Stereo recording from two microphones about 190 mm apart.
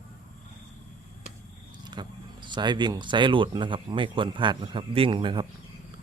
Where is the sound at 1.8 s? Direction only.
25° right (ahead or behind).